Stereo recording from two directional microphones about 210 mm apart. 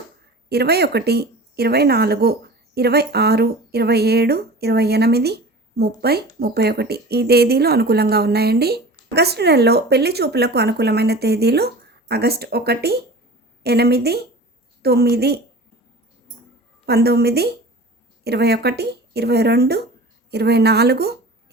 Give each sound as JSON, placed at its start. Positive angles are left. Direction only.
{"t": 0.4, "sound": "speech", "side_deg": -50}
{"t": 16.8, "sound": "speech", "side_deg": -50}